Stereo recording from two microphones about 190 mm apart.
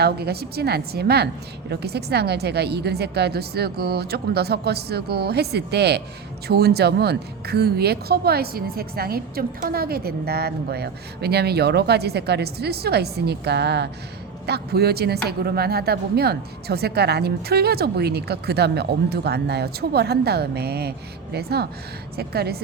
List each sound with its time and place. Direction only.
0.0 s speech: 55° right (ahead or behind)